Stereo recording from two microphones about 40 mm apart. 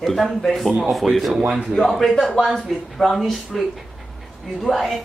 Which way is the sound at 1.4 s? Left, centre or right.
Right.